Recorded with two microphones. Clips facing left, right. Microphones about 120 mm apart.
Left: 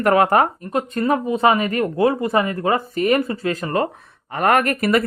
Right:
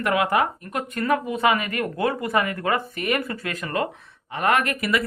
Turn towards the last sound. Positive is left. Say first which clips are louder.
# left 5 dB
turn(degrees=45)  # may be behind; listen again after turning